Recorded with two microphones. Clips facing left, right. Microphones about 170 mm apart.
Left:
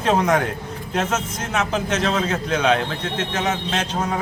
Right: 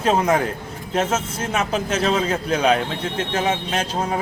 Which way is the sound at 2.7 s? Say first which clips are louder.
Even; 10° right (ahead or behind).